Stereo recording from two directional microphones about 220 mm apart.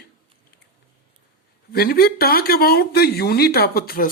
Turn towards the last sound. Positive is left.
turn(degrees=45)  # may be behind; listen again after turning